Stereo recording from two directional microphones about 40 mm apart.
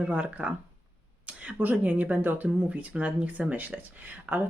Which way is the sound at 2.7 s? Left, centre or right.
Right.